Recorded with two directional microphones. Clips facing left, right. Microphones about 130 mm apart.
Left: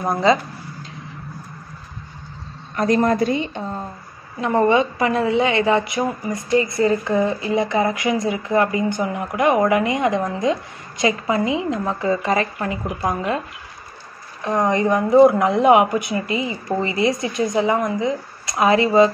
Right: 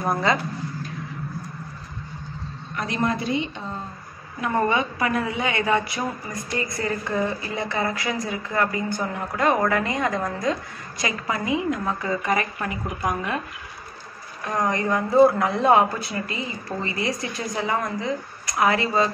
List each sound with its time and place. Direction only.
2.7 s a woman's voice: 40° left (ahead or behind)
4.4 s a woman's voice: 20° left (ahead or behind)
14.4 s a woman's voice: 20° left (ahead or behind)